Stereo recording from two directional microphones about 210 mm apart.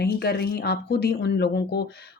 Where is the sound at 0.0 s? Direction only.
50° left (ahead or behind).